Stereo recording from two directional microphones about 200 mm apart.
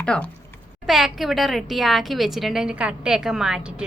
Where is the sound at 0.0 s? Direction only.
5° left (ahead or behind).